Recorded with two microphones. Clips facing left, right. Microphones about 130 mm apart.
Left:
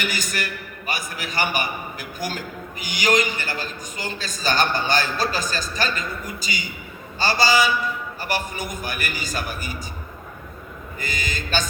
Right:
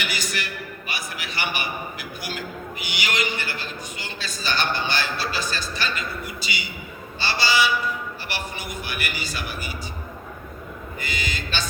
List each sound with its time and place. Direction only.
0.0 s a man's voice: 45° left (ahead or behind)
11.0 s a man's voice: 45° left (ahead or behind)